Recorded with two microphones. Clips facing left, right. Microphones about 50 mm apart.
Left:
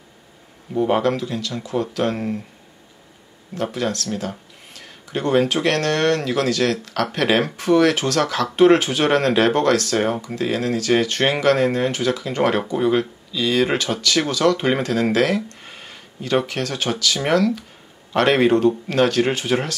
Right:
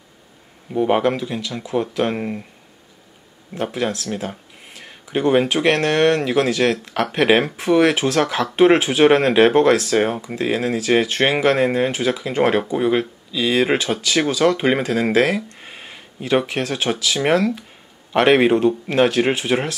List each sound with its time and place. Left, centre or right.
0.8 s a man's voice: right
3.5 s a man's voice: centre